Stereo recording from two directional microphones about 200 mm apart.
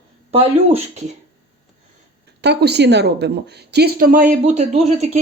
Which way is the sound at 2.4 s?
55° right (ahead or behind).